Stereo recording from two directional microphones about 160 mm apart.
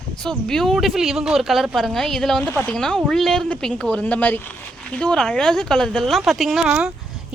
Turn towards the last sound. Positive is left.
turn(degrees=-5)  # may be behind; listen again after turning